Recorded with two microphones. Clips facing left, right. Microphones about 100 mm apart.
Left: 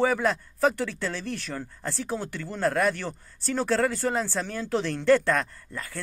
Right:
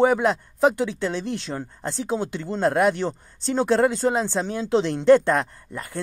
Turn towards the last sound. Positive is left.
turn(degrees=-20)  # may be behind; listen again after turning